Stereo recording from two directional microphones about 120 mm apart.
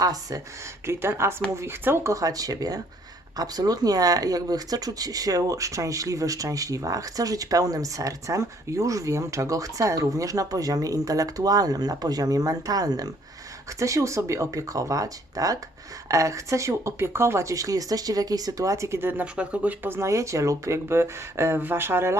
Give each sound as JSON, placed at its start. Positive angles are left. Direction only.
{"t": 0.0, "sound": "speech", "side_deg": -30}